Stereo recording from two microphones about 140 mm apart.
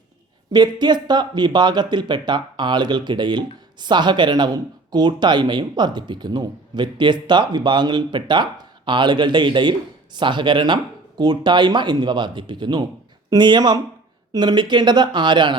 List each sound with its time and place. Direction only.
0.5 s speech: 30° right (ahead or behind)